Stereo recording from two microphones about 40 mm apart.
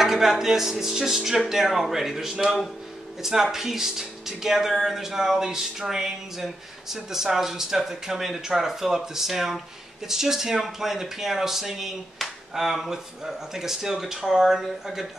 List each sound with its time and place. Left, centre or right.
0.0 s speech: centre
1.6 s speech: centre